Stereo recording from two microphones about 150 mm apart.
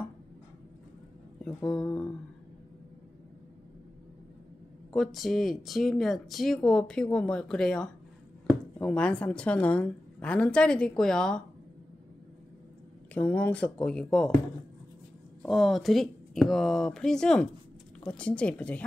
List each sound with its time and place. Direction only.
1.4 s a woman's voice: 5° left (ahead or behind)
4.9 s a woman's voice: centre (ahead or behind)
13.1 s a woman's voice: 10° left (ahead or behind)
15.4 s a woman's voice: centre (ahead or behind)